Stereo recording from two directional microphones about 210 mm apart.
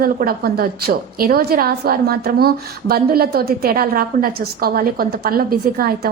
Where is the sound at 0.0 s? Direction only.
45° right (ahead or behind).